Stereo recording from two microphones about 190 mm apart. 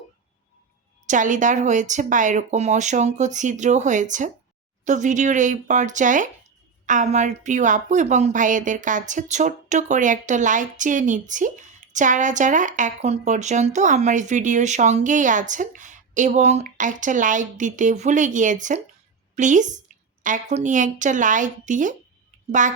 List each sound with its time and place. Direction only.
1.0 s a woman's voice: 40° right (ahead or behind)